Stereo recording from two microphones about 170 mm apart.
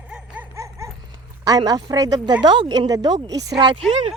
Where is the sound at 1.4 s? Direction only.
20° right (ahead or behind).